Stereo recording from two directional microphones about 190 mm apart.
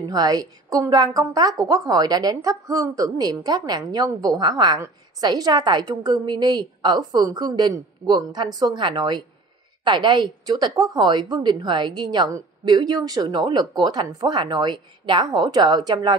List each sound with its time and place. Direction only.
0.1 s a woman's voice: 20° right (ahead or behind)